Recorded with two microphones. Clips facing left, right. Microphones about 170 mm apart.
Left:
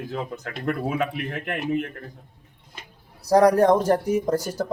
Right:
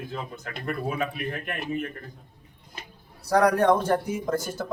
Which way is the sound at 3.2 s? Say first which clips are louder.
Left 4 dB; 35° left (ahead or behind).